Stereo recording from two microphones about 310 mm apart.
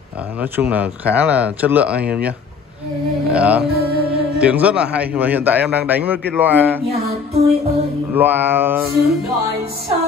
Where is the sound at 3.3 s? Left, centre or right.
Centre.